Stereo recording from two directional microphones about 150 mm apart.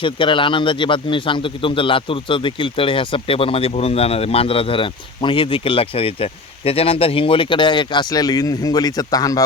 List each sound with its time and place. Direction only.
0.0 s a man's voice: 35° left (ahead or behind)